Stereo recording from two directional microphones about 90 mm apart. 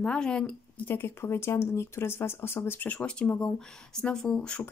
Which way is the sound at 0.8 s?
25° left (ahead or behind).